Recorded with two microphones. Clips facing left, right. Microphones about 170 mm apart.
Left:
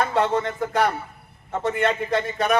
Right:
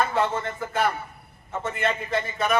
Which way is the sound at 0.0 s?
70° left (ahead or behind).